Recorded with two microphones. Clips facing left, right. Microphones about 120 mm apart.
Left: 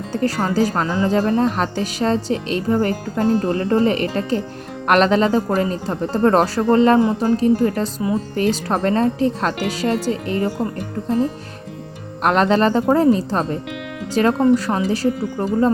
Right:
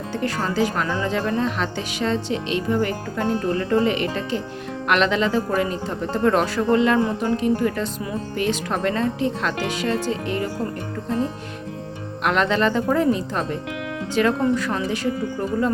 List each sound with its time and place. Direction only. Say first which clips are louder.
0.1 s music: left 5 dB; 40° left (ahead or behind)
0.5 s speech: left 3 dB; 40° left (ahead or behind)
12.2 s speech: left 4 dB; 40° left (ahead or behind)